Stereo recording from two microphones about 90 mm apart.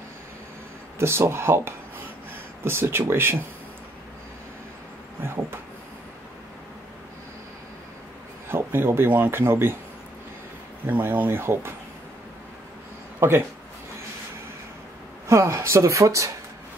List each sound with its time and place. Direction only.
0.9 s speech: 30° right (ahead or behind)
5.2 s a sound: 25° right (ahead or behind)
8.5 s speech: 25° right (ahead or behind)
10.9 s speech: 20° right (ahead or behind)
15.2 s speech: 30° right (ahead or behind)